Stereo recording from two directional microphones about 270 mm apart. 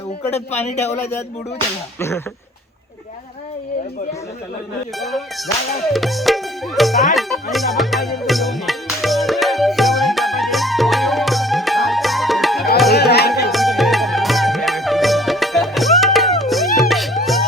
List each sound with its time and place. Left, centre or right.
0.3 s a man's voice: left
2.0 s speech: centre
4.9 s music: centre
12.9 s music: left
13.5 s music: centre